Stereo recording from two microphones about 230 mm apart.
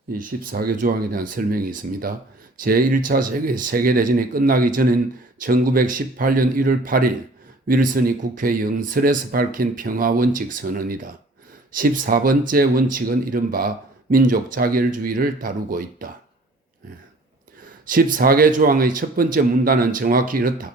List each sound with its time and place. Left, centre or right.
0.1 s speech: right
17.8 s speech: right